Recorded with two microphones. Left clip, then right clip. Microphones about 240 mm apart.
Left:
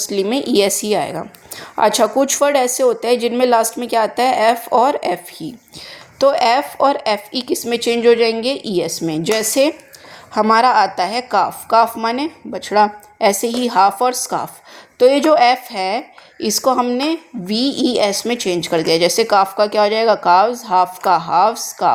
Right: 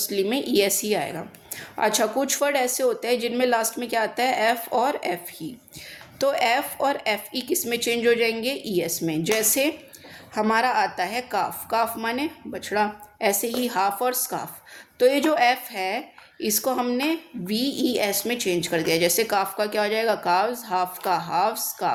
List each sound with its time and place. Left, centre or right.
0.1 s a woman's voice: left